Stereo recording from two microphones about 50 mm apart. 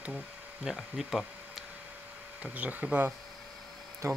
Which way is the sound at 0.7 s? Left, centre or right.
Centre.